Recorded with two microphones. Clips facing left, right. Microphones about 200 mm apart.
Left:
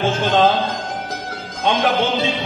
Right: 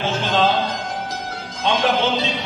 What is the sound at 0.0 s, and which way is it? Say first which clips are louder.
Music: left 4 dB; 50° left (ahead or behind).